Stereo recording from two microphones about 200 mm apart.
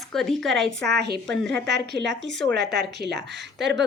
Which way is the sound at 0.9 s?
55° right (ahead or behind).